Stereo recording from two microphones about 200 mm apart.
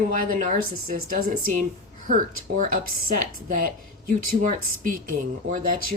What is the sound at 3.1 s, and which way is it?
A woman's voice, 45° right (ahead or behind).